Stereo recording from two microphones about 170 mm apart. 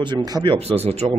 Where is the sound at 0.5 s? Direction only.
35° right (ahead or behind).